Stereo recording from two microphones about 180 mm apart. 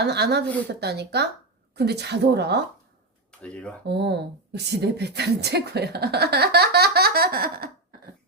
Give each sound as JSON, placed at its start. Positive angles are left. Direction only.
{"t": 0.0, "sound": "a woman's voice", "side_deg": -70}
{"t": 3.4, "sound": "speech", "side_deg": 5}
{"t": 3.8, "sound": "speech", "side_deg": -65}